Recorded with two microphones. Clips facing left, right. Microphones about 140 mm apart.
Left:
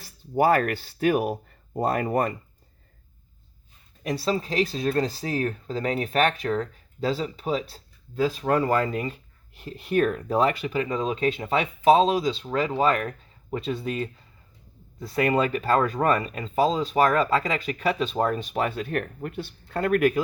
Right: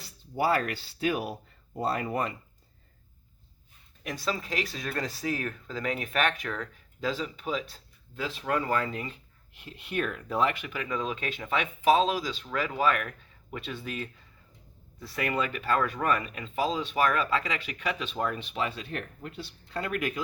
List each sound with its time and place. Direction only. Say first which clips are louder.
0.0 s speech: left 7 dB; 50° left (ahead or behind)
4.0 s speech: left 7 dB; 35° left (ahead or behind); by 20.2 s 50° left (ahead or behind)